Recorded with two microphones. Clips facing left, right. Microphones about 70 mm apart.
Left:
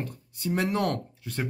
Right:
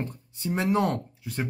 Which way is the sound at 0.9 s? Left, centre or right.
Centre.